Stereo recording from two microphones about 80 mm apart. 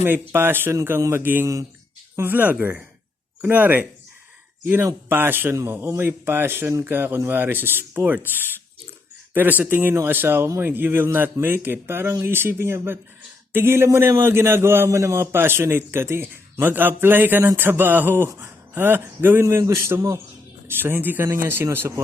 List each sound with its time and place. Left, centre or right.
0.0 s a man's voice: right
18.3 s gasp: right
18.8 s a man's voice: right